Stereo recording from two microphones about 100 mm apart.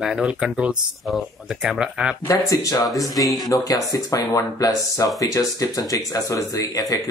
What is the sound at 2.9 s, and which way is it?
Speech, centre (ahead or behind).